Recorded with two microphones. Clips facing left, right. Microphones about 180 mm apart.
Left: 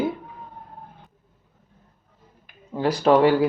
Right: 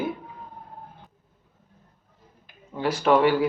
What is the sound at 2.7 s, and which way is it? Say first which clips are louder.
Speech: left 3 dB; 35° left (ahead or behind).